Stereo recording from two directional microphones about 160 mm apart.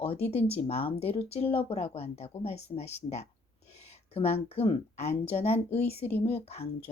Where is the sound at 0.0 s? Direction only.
40° left (ahead or behind).